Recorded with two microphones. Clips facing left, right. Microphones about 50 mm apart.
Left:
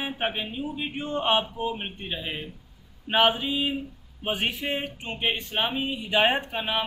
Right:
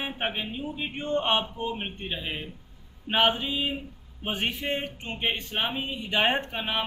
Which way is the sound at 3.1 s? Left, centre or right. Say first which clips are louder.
Left 2 dB; centre.